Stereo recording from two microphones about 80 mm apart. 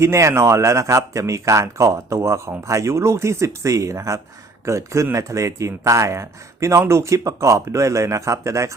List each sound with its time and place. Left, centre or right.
0.0 s speech: right